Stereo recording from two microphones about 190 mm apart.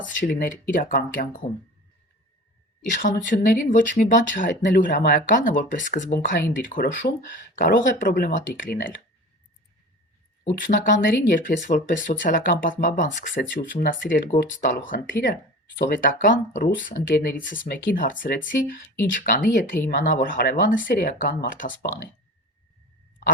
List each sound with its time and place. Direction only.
0.0 s speech: 45° left (ahead or behind)
3.2 s speech: 45° left (ahead or behind)
10.4 s speech: 40° left (ahead or behind)